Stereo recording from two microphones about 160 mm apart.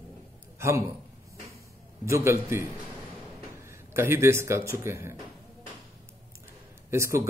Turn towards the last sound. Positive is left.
turn(degrees=-15)  # may be behind; listen again after turning